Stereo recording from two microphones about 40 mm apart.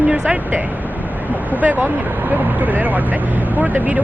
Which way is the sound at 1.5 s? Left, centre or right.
Right.